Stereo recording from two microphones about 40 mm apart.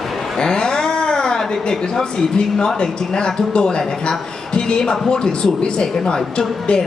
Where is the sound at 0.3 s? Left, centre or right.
Centre.